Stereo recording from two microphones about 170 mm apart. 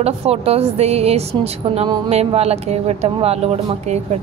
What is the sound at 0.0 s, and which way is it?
Speech, 35° right (ahead or behind).